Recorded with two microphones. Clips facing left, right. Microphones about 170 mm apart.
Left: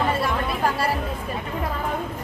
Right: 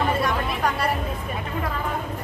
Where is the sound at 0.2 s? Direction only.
30° left (ahead or behind).